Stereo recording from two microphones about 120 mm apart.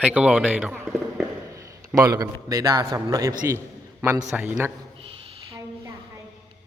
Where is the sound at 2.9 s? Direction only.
30° right (ahead or behind).